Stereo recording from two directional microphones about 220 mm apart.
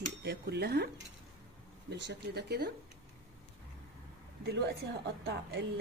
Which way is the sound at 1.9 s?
50° right (ahead or behind).